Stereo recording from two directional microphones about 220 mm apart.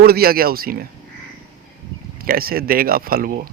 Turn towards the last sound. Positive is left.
turn(degrees=-40)  # may be behind; listen again after turning